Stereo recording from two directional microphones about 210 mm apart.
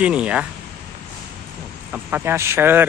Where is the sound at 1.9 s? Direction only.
10° right (ahead or behind).